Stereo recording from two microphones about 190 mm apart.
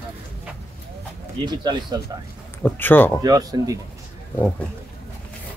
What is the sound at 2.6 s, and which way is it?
Speech, 10° left (ahead or behind).